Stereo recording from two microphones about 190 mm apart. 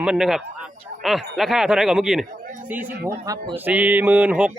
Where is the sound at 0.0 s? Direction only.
5° right (ahead or behind).